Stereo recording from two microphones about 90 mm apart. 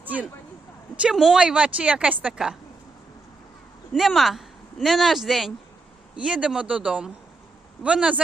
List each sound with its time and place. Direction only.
0.0 s a sound: 20° right (ahead or behind)
1.1 s a woman's voice: 5° right (ahead or behind)
3.9 s speech: centre (ahead or behind)
6.1 s a woman's voice: 10° right (ahead or behind)